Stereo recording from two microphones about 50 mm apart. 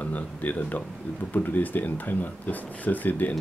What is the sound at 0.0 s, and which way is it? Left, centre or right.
Speech, left.